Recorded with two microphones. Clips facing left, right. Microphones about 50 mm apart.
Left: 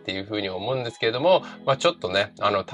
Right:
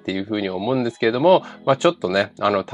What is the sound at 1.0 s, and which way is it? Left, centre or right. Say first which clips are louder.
Speech: right 4 dB; right.